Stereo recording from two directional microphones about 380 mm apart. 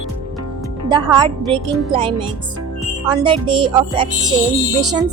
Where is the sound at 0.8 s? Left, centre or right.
Centre.